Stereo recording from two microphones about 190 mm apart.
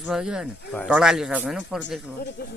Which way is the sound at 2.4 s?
55° left (ahead or behind).